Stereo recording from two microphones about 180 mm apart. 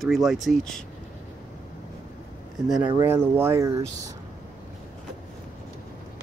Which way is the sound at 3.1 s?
15° right (ahead or behind).